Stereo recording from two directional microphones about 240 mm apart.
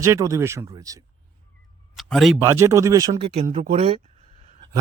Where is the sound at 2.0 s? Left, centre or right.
Centre.